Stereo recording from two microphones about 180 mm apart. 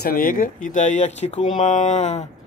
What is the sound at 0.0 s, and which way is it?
Speech, 55° left (ahead or behind).